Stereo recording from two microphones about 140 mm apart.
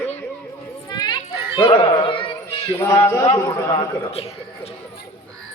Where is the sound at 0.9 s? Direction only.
30° left (ahead or behind).